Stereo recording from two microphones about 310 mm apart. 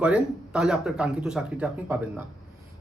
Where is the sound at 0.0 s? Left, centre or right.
Centre.